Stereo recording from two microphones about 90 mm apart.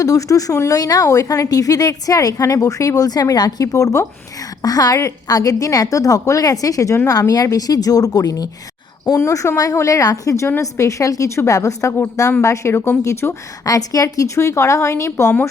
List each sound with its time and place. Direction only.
0.0 s a woman's voice: 40° left (ahead or behind)